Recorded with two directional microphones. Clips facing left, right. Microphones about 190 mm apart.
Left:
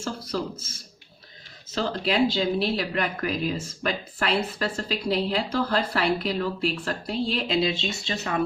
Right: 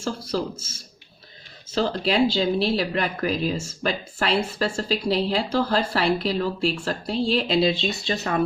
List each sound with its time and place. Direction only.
0.3 s speech: 30° right (ahead or behind)
1.7 s speech: 30° right (ahead or behind)